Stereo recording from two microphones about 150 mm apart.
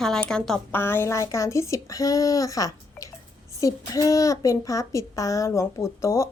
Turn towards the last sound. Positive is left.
turn(degrees=20)  # may be behind; listen again after turning